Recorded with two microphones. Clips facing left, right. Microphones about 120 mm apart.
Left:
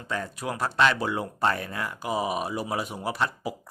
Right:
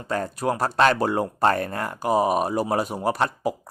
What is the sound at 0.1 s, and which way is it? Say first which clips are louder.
A man's voice: right 7 dB; 45° right (ahead or behind).